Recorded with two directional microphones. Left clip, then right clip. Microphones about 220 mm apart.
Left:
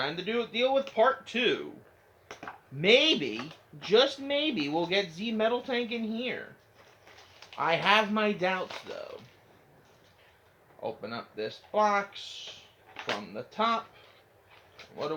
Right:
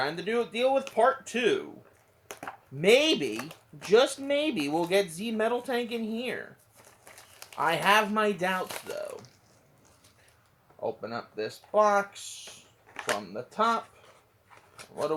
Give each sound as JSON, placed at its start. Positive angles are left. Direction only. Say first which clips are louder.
{"t": 0.0, "sound": "speech", "louder": "right 2 dB", "side_deg": -30}
{"t": 7.5, "sound": "speech", "louder": "right 1 dB", "side_deg": -30}
{"t": 11.0, "sound": "speech", "louder": "right 2 dB", "side_deg": -30}